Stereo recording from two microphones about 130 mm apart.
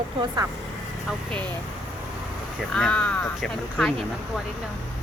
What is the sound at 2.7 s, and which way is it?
Speech, 5° left (ahead or behind).